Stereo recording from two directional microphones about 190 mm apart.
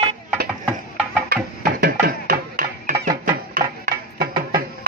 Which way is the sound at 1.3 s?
50° right (ahead or behind).